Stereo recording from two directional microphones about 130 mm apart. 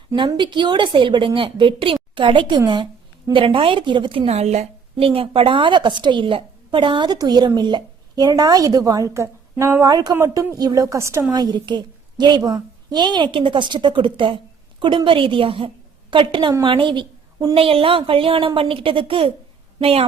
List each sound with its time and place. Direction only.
0.3 s a woman's voice: 35° right (ahead or behind)
4.3 s a woman's voice: 55° right (ahead or behind)